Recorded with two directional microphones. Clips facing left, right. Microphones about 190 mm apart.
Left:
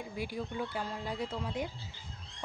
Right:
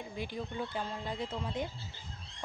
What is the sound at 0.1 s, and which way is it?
Speech, 10° left (ahead or behind).